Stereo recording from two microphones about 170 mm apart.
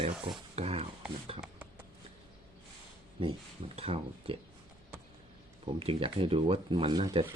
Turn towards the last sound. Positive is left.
turn(degrees=-30)  # may be behind; listen again after turning